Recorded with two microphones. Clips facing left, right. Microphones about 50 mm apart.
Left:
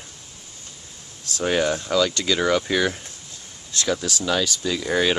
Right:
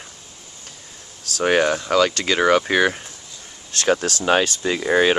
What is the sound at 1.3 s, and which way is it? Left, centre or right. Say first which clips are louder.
Speech: right 4 dB; right.